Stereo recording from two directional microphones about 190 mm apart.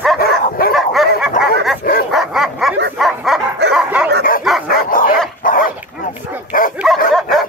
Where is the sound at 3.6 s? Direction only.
60° right (ahead or behind).